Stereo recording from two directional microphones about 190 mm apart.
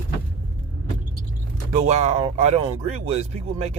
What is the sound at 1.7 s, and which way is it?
A man's voice, 35° right (ahead or behind).